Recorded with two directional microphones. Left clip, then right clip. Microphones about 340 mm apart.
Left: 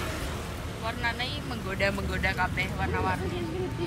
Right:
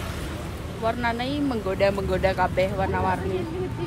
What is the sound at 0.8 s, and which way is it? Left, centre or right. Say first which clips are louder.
Speech: right 6 dB; centre.